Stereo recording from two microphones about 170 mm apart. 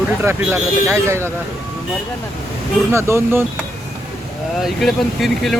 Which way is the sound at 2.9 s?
15° right (ahead or behind).